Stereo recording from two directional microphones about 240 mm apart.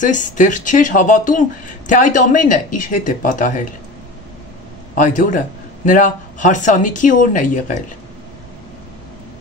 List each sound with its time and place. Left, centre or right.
0.0 s speech: left
4.9 s speech: left